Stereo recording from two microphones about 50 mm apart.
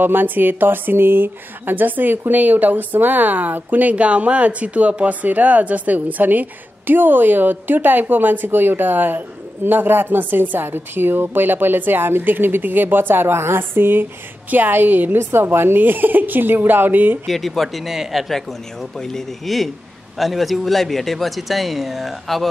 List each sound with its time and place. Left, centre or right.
0.0 s speech: right
3.9 s speech: right
17.3 s a man's voice: centre
18.3 s a man's voice: centre